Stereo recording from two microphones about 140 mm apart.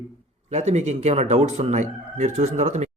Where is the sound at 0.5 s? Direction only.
50° right (ahead or behind).